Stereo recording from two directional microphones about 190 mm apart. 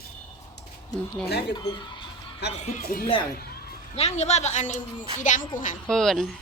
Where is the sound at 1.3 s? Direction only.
60° left (ahead or behind).